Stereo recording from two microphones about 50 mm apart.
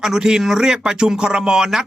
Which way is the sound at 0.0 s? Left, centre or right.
Centre.